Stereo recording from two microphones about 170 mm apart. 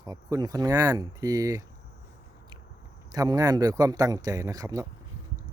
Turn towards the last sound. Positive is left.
turn(degrees=-20)  # may be behind; listen again after turning